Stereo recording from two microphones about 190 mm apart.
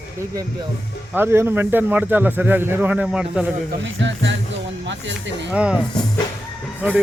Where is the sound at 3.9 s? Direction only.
75° right (ahead or behind).